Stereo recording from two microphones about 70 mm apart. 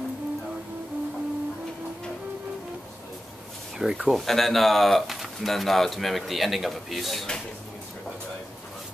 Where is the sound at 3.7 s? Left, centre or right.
Centre.